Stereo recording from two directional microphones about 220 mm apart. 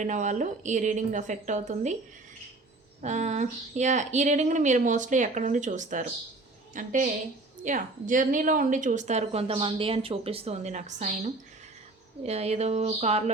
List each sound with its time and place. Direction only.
0.0 s a woman's voice: 35° right (ahead or behind)
3.0 s a woman's voice: 35° right (ahead or behind)